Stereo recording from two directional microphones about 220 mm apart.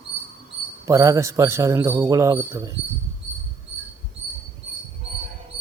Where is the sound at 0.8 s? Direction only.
15° right (ahead or behind).